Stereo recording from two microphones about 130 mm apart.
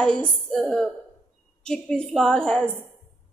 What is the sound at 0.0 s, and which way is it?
Speech, 10° left (ahead or behind).